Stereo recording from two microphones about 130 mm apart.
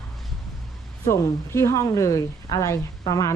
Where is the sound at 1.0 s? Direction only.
20° left (ahead or behind).